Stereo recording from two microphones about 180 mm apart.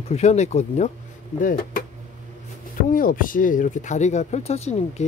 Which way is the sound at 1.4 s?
50° left (ahead or behind).